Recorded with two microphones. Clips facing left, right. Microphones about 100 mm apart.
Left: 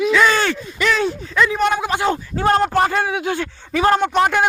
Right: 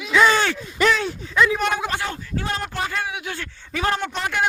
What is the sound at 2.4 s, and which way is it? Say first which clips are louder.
Speech: left 13 dB; 50° left (ahead or behind).